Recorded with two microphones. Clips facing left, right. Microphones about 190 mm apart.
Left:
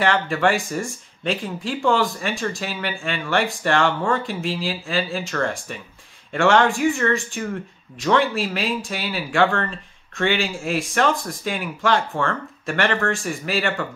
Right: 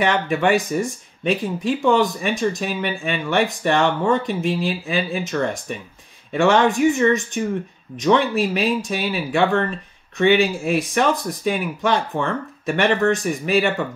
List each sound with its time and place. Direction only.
0.0 s speech: 20° right (ahead or behind)